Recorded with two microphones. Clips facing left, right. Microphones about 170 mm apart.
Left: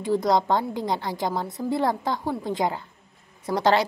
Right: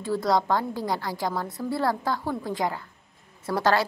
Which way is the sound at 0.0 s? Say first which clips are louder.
Left 2 dB; 20° left (ahead or behind).